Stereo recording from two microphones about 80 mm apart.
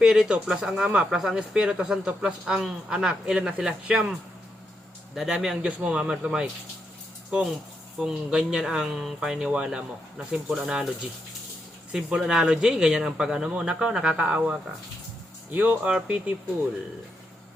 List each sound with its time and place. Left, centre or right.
0.0 s speech: centre
11.9 s speech: centre
15.5 s speech: centre